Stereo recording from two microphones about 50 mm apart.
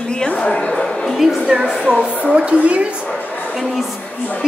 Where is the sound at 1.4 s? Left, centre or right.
Centre.